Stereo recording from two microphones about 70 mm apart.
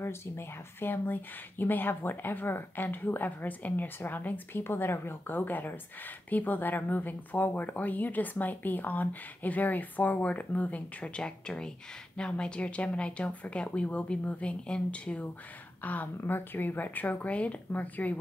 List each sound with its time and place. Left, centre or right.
0.0 s speech: left